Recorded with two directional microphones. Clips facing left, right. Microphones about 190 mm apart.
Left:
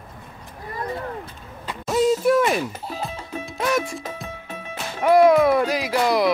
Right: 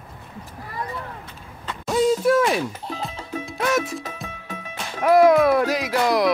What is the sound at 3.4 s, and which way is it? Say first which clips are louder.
Music: even; centre (ahead or behind).